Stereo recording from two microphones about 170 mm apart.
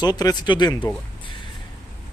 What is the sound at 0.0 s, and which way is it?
Speech, 20° left (ahead or behind).